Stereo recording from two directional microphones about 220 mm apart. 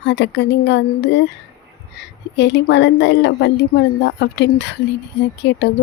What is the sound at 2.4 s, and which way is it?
A woman's voice, 50° left (ahead or behind).